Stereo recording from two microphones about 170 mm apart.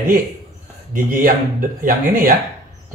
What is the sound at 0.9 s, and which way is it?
Speech, 55° right (ahead or behind).